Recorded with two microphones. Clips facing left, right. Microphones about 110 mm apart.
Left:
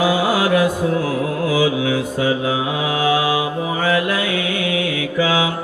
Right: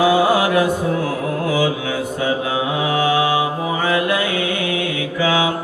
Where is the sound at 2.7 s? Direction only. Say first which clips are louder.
Right 3 dB; 35° right (ahead or behind).